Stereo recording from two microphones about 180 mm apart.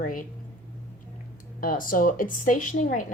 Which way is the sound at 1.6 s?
50° left (ahead or behind).